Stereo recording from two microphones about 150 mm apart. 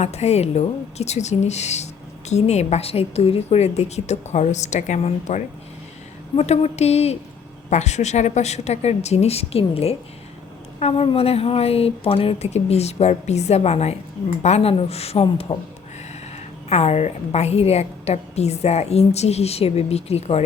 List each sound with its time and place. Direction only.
0.0 s a woman's voice: 45° left (ahead or behind)
16.6 s a woman's voice: 45° left (ahead or behind)